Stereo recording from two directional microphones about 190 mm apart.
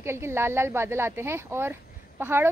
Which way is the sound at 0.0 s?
15° right (ahead or behind).